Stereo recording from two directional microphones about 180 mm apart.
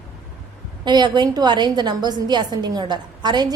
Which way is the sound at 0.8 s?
25° right (ahead or behind).